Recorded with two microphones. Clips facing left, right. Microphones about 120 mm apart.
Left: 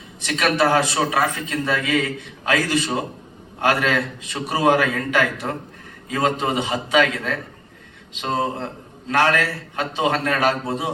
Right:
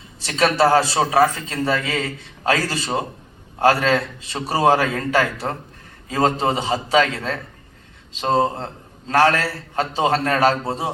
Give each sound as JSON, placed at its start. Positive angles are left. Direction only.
{"t": 0.2, "sound": "a man's voice", "side_deg": -30}